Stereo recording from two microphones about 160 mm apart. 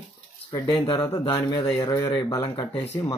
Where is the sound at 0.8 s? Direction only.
20° left (ahead or behind).